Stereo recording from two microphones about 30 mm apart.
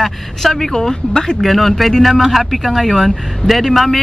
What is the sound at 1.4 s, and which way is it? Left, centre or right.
Speech, centre.